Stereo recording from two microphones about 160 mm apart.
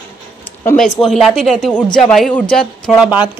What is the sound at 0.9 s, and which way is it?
A man's voice, centre (ahead or behind).